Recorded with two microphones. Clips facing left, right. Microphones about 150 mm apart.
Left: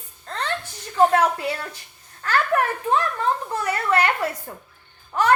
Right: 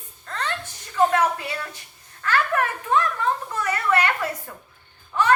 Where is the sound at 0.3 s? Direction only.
30° left (ahead or behind).